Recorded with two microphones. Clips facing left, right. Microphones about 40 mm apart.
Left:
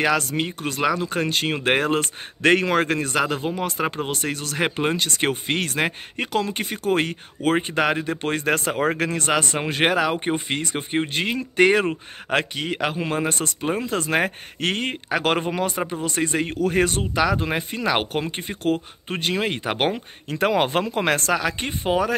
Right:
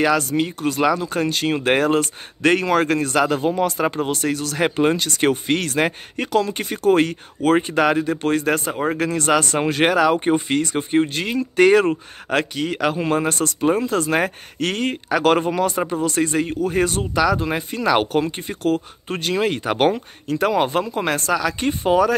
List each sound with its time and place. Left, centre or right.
0.0 s speech: left
2.7 s speech: centre
8.5 s speech: left
8.9 s speech: left
12.9 s speech: centre; by 16.4 s left
16.6 s speech: left; by 20.0 s centre
20.2 s speech: left
21.4 s speech: left
21.6 s speech: centre